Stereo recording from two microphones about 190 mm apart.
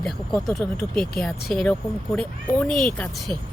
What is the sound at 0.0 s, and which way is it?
Speech, centre (ahead or behind).